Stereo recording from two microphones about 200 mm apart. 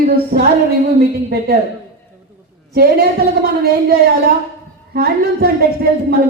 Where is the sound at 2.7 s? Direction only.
50° right (ahead or behind).